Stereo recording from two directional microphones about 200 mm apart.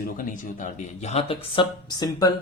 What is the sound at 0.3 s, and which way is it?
Speech, 40° left (ahead or behind).